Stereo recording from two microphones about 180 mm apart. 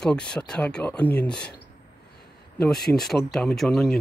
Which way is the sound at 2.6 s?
5° left (ahead or behind).